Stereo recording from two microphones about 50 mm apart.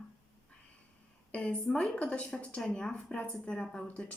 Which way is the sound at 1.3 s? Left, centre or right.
Left.